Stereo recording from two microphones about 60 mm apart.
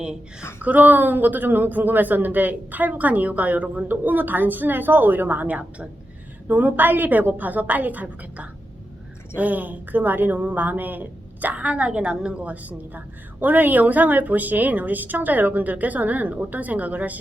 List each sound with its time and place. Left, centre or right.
0.6 s speech: right